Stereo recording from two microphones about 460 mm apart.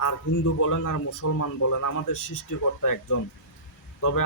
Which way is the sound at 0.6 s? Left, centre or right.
Left.